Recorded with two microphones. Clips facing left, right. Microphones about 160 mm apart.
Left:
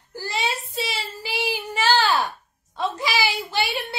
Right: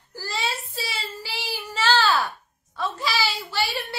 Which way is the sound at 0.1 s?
20° left (ahead or behind).